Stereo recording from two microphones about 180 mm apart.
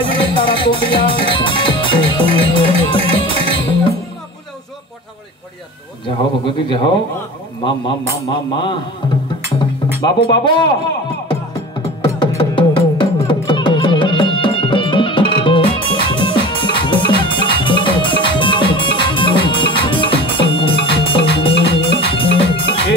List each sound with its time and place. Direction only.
0.0 s music: 30° left (ahead or behind)
6.0 s a man's voice: 30° left (ahead or behind)
10.0 s a man's voice: 25° left (ahead or behind)
12.0 s music: 25° left (ahead or behind)